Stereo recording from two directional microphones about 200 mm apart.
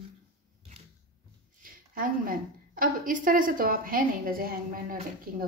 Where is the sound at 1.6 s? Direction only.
45° right (ahead or behind).